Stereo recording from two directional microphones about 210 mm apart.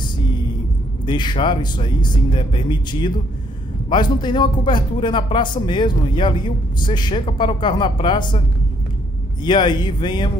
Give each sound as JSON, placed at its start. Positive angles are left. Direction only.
{"t": 1.0, "sound": "speech", "side_deg": 20}
{"t": 9.4, "sound": "speech", "side_deg": 20}